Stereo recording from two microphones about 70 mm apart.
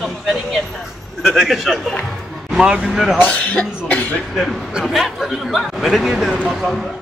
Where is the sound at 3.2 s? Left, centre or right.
Left.